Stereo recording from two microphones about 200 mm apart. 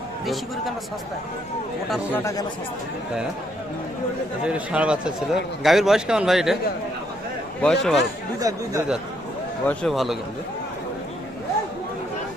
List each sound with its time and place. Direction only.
1.9 s speech: 10° left (ahead or behind)
4.4 s a man's voice: 5° right (ahead or behind)
7.6 s a man's voice: 5° left (ahead or behind)
8.4 s speech: 20° right (ahead or behind)
9.6 s a man's voice: centre (ahead or behind)